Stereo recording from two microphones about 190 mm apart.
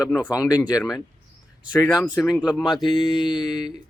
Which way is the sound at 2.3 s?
5° right (ahead or behind).